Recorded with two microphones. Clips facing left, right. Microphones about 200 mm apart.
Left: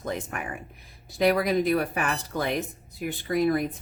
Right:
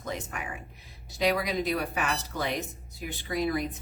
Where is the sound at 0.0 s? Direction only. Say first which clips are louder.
Left 4 dB; 55° left (ahead or behind).